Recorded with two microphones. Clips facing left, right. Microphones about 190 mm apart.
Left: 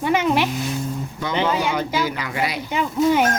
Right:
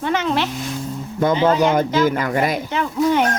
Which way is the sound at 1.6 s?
50° right (ahead or behind).